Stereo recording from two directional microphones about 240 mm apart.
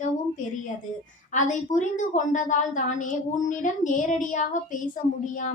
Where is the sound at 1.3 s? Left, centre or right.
Left.